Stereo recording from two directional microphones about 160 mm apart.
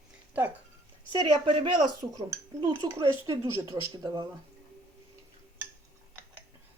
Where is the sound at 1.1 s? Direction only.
30° right (ahead or behind).